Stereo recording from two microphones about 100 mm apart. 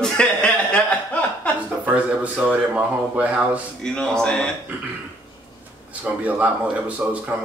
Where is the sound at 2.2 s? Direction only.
15° right (ahead or behind).